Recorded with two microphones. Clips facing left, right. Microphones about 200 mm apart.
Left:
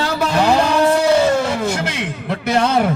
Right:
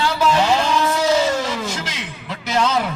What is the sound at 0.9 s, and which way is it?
A man's voice, 60° left (ahead or behind).